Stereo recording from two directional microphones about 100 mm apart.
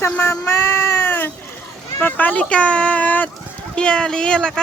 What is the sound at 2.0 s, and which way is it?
Speech, 15° left (ahead or behind).